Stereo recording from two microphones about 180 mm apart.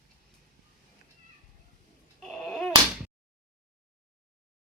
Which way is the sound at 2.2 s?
Centre (ahead or behind).